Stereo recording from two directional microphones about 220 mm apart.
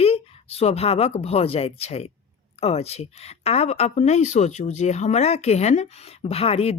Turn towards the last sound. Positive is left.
turn(degrees=25)  # may be behind; listen again after turning